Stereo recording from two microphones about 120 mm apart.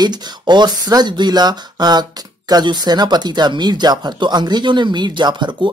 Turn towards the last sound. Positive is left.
turn(degrees=-40)  # may be behind; listen again after turning